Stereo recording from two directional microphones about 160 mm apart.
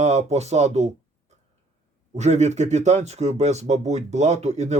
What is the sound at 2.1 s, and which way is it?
Speech, 45° right (ahead or behind).